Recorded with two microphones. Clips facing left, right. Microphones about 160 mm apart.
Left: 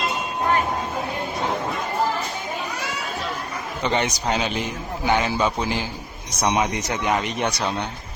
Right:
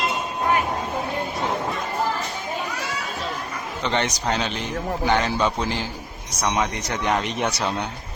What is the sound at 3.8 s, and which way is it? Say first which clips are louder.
Speech: left 1 dB; 10° left (ahead or behind).